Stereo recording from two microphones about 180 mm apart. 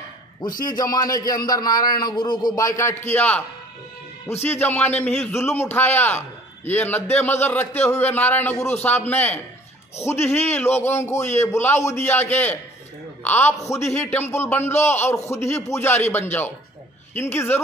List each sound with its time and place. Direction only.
0.6 s a man's voice: 20° left (ahead or behind)